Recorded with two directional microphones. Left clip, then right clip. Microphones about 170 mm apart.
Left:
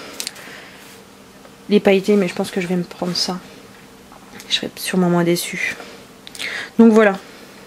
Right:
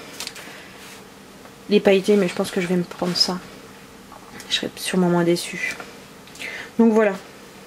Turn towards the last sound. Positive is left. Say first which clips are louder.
# left 5 dB
turn(degrees=35)  # may be behind; listen again after turning